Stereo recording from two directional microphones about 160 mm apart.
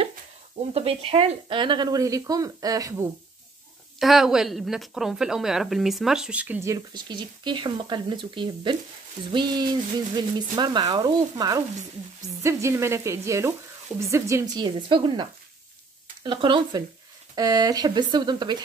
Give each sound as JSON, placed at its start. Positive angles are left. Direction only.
{"t": 0.7, "sound": "speech", "side_deg": -40}
{"t": 4.0, "sound": "a woman's voice", "side_deg": 0}
{"t": 12.4, "sound": "frying", "side_deg": -20}
{"t": 13.9, "sound": "speech", "side_deg": -20}